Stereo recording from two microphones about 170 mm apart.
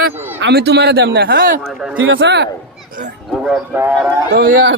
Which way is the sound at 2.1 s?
90° right.